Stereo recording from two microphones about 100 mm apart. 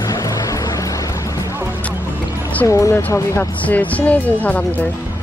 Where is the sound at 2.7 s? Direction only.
30° left (ahead or behind).